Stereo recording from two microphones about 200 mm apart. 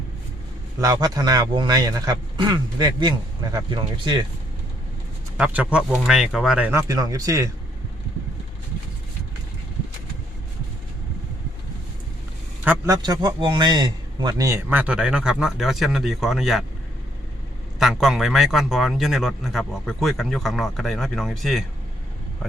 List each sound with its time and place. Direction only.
0.8 s a man's voice: 15° right (ahead or behind)
5.4 s a man's voice: 5° right (ahead or behind)
12.6 s a man's voice: 10° right (ahead or behind)
17.7 s a man's voice: centre (ahead or behind)